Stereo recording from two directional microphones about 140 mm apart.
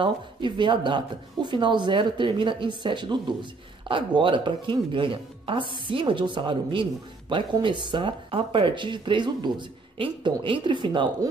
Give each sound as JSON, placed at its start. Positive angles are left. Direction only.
{"t": 0.0, "sound": "speech", "side_deg": -35}